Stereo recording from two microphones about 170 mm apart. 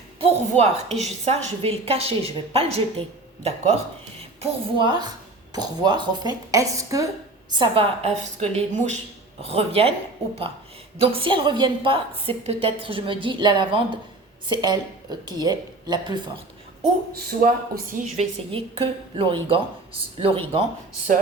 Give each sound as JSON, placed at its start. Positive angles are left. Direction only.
{"t": 0.2, "sound": "a woman's voice", "side_deg": -40}
{"t": 7.5, "sound": "a woman's voice", "side_deg": -30}
{"t": 10.9, "sound": "a woman's voice", "side_deg": -35}
{"t": 17.2, "sound": "speech", "side_deg": -60}
{"t": 17.9, "sound": "a woman's voice", "side_deg": -40}